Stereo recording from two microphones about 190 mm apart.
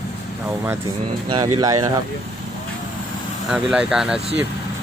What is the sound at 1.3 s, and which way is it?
Speech, 20° right (ahead or behind).